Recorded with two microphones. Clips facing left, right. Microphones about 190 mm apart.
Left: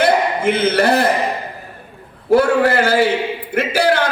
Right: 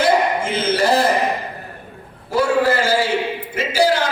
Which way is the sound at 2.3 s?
60° left (ahead or behind).